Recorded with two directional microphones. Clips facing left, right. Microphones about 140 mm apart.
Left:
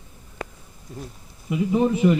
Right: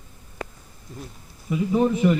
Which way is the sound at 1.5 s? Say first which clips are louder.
Even; 15° left (ahead or behind).